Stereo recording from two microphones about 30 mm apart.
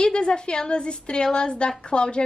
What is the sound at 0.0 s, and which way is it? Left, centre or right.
A woman's voice, left.